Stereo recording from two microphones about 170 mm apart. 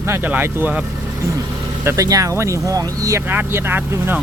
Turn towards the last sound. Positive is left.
turn(degrees=-15)  # may be behind; listen again after turning